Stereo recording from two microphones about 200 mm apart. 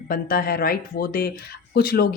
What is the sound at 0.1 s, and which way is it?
Speech, 45° left (ahead or behind).